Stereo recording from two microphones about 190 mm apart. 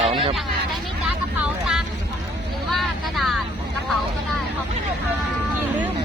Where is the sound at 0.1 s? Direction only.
25° right (ahead or behind).